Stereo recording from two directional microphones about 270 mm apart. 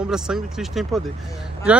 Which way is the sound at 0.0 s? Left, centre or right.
Centre.